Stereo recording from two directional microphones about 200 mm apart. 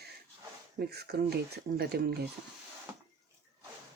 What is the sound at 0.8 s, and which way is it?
Speech, 55° right (ahead or behind).